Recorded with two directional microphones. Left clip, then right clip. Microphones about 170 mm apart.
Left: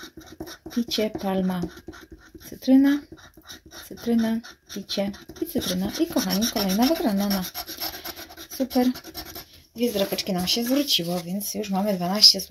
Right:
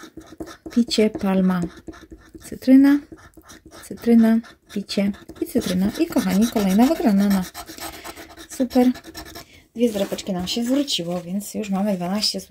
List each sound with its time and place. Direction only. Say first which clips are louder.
0.7 s speech: right 6 dB; 45° right (ahead or behind)
4.0 s speech: right 8 dB; 40° right (ahead or behind)
9.8 s speech: right 2 dB; 5° right (ahead or behind)